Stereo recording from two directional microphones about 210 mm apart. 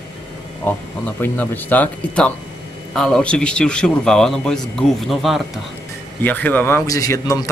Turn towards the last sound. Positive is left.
turn(degrees=15)  # may be behind; listen again after turning